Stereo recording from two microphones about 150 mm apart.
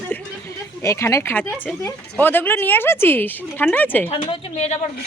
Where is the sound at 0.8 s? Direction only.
20° left (ahead or behind).